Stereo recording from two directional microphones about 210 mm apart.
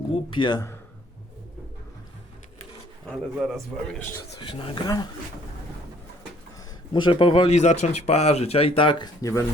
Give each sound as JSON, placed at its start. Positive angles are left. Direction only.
{"t": 0.3, "sound": "speech", "side_deg": 20}
{"t": 3.1, "sound": "a man's voice", "side_deg": 0}
{"t": 4.4, "sound": "speech", "side_deg": 25}
{"t": 6.9, "sound": "speech", "side_deg": 20}